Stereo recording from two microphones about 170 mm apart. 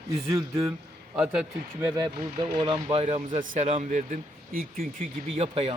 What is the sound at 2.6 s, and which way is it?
Speech, 30° right (ahead or behind).